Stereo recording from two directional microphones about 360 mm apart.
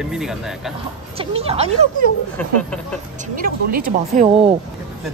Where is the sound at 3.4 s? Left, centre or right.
Right.